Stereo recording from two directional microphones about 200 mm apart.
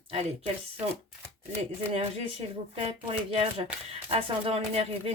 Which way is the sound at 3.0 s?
30° right (ahead or behind).